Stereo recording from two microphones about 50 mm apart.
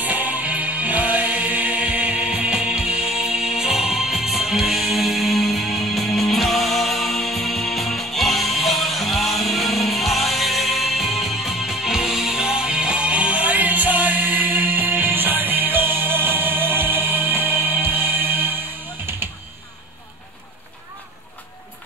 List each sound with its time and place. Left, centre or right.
0.0 s music: right